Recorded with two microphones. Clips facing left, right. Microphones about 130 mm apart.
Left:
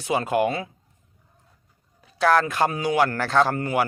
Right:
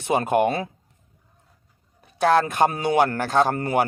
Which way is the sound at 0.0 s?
55° right (ahead or behind).